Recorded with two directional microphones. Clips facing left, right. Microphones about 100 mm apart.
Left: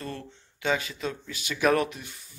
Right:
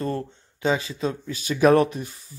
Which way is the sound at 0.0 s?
35° right (ahead or behind).